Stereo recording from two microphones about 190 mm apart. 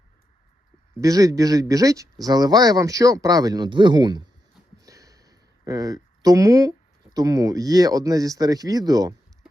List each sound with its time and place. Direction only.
1.0 s speech: 20° right (ahead or behind)